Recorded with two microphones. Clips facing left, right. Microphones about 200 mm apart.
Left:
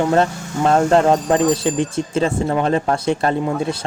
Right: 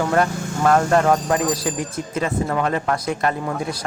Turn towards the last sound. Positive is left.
turn(degrees=25)  # may be behind; listen again after turning